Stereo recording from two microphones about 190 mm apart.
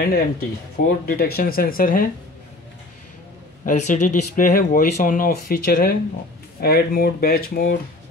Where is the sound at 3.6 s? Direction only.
40° left (ahead or behind).